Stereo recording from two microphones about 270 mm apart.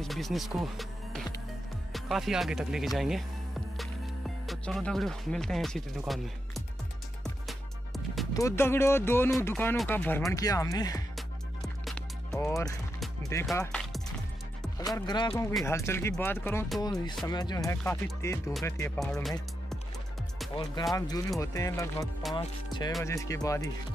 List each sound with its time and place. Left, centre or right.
0.0 s music: centre
1.9 s speech: centre
4.5 s speech: centre
7.2 s music: centre
8.3 s speech: centre
11.1 s music: centre
12.4 s speech: centre
14.8 s speech: centre
16.8 s speech: centre
20.8 s speech: centre